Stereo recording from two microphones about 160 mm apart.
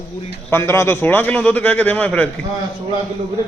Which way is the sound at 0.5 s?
15° left (ahead or behind).